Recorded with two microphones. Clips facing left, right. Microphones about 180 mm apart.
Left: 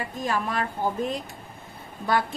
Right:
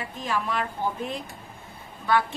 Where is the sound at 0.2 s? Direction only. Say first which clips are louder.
Left 1 dB; 45° left (ahead or behind).